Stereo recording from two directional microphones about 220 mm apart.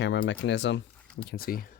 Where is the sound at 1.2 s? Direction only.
40° left (ahead or behind).